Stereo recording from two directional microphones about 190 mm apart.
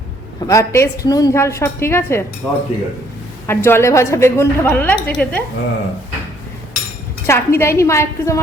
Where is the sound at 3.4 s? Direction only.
15° left (ahead or behind).